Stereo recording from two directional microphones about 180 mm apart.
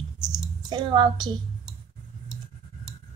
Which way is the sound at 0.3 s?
25° right (ahead or behind).